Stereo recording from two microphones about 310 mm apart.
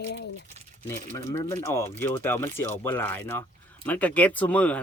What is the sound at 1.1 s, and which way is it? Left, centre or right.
Speech, centre.